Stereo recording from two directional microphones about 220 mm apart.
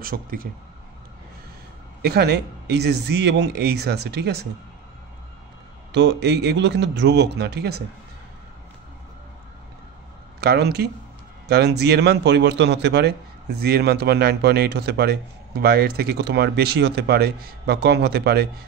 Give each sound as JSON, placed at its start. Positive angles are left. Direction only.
{"t": 0.0, "sound": "a man's voice", "side_deg": -40}
{"t": 2.0, "sound": "a man's voice", "side_deg": -45}
{"t": 5.9, "sound": "a man's voice", "side_deg": -50}
{"t": 10.4, "sound": "a man's voice", "side_deg": -45}